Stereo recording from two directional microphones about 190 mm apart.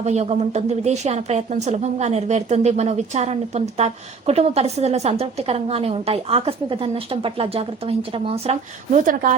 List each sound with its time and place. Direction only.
0.0 s speech: 35° right (ahead or behind)